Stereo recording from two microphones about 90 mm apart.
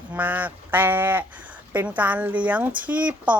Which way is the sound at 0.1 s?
20° right (ahead or behind).